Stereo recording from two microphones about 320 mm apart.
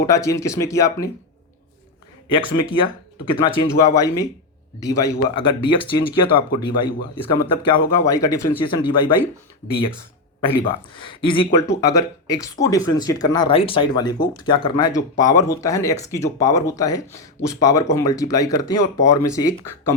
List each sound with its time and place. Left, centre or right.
0.0 s speech: centre
2.3 s speech: centre
10.9 s speech: centre